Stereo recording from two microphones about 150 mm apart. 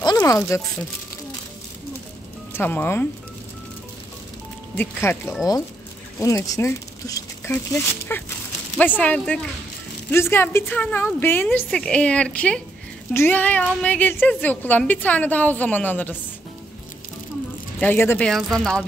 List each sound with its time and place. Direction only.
0.0 s speech: 25° left (ahead or behind)
2.5 s a woman's voice: 15° left (ahead or behind)
4.7 s a woman's voice: 15° left (ahead or behind)
17.7 s a woman's voice: 15° left (ahead or behind)